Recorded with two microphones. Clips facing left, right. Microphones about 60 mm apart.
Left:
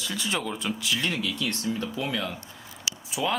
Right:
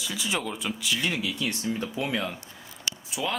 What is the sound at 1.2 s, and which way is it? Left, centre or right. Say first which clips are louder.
Speech: even; centre.